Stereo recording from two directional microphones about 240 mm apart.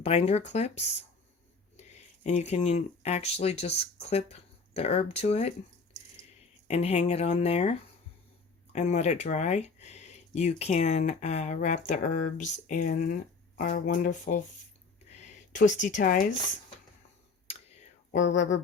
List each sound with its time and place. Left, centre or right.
0.0 s speech: left
2.2 s speech: left
6.7 s speech: left
15.1 s a sound: left